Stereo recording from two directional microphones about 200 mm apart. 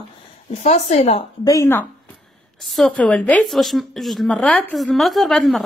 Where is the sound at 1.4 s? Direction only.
15° left (ahead or behind).